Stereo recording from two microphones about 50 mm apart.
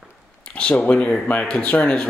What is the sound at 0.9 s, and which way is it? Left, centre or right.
Speech, left.